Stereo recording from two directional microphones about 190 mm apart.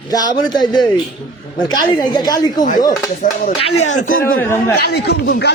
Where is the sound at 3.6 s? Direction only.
35° left (ahead or behind).